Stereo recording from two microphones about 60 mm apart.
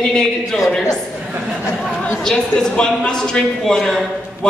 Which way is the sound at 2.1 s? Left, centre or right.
Centre.